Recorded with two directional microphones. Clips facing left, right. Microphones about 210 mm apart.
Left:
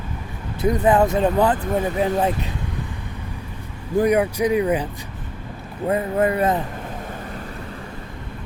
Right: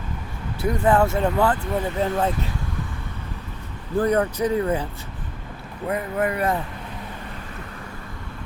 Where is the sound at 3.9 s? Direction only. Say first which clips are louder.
Left 3 dB; 10° left (ahead or behind).